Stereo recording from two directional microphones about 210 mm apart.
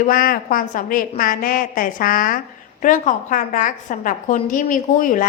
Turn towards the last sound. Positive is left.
turn(degrees=40)  # may be behind; listen again after turning